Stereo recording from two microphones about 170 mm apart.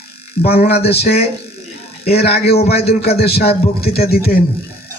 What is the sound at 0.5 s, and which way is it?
Speech, 65° left (ahead or behind).